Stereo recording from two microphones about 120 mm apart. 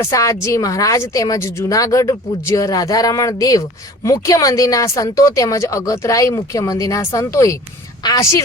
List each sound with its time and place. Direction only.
0.0 s speech: 25° left (ahead or behind)